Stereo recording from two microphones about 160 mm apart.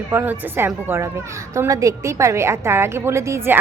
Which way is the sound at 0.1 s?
15° right (ahead or behind).